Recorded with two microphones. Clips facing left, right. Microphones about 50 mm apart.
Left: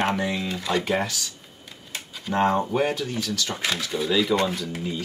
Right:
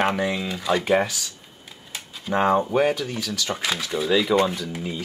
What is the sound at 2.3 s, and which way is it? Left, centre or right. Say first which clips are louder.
Speech: right 2 dB; centre.